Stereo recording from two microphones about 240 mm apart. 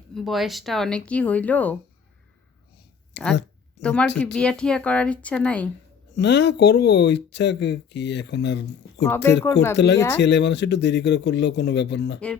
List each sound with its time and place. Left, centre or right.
0.1 s speech: centre
3.8 s speech: centre
6.1 s speech: left
9.0 s speech: centre
9.7 s speech: left